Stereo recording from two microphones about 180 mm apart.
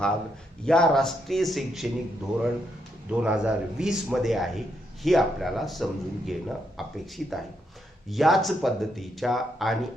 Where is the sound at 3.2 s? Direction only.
5° right (ahead or behind).